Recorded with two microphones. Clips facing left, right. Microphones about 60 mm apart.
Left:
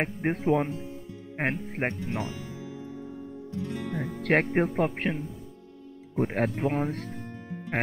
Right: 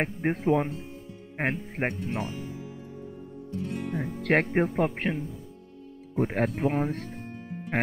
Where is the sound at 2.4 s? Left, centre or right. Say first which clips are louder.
Right 1 dB; left.